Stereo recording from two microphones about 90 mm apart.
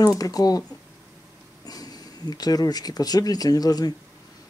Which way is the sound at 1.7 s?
45° left (ahead or behind).